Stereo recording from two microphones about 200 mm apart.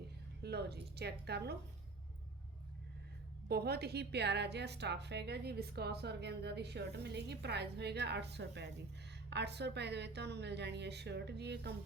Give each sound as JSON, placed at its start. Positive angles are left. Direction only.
{"t": 0.4, "sound": "a woman's voice", "side_deg": -55}
{"t": 3.5, "sound": "a woman's voice", "side_deg": -55}